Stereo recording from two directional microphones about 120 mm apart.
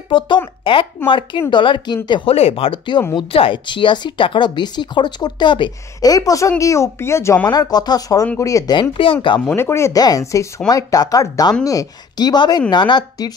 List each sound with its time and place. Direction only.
0.1 s speech: 45° left (ahead or behind)
2.3 s speech: 55° left (ahead or behind)
5.9 s speech: 30° left (ahead or behind)
7.5 s speech: 35° left (ahead or behind)
8.9 s speech: 45° left (ahead or behind)
9.5 s speech: 20° left (ahead or behind); by 13.3 s 40° left (ahead or behind)